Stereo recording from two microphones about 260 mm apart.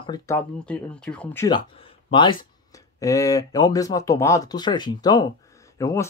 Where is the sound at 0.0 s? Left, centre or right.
Centre.